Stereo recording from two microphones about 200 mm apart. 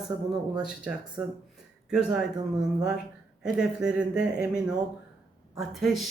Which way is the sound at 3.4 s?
5° right (ahead or behind).